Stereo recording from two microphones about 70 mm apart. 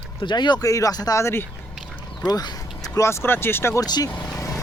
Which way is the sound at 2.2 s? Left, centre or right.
Left.